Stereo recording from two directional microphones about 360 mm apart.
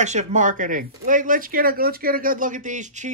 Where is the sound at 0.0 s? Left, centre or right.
Centre.